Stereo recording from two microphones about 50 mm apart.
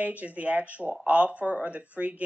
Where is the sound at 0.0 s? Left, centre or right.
Right.